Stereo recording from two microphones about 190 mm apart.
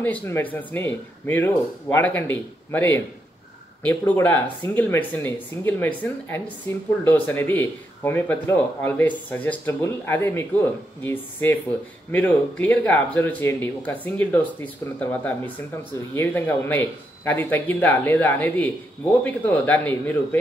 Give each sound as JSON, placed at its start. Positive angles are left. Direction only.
{"t": 0.0, "sound": "speech", "side_deg": 10}